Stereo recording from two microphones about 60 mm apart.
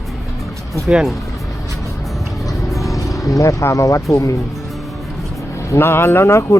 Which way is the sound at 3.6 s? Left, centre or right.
Left.